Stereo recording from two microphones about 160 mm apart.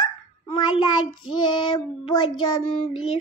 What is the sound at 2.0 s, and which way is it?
Speech, 30° left (ahead or behind).